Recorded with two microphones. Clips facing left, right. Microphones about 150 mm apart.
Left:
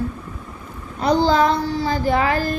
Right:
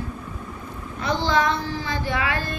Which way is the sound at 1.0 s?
35° left (ahead or behind).